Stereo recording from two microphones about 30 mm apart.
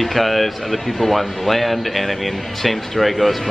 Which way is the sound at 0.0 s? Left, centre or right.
Centre.